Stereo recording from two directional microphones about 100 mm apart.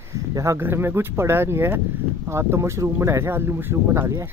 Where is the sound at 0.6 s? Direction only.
25° right (ahead or behind).